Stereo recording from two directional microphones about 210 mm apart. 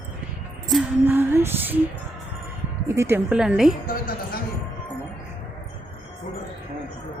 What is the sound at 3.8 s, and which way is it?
Speech, 45° left (ahead or behind).